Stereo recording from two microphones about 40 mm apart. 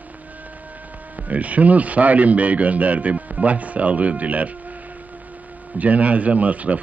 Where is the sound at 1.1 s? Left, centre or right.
Right.